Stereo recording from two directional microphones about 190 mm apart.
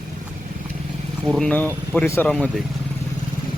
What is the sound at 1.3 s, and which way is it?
A man's voice, 5° left (ahead or behind).